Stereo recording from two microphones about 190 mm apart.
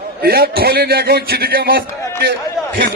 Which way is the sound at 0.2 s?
55° right (ahead or behind).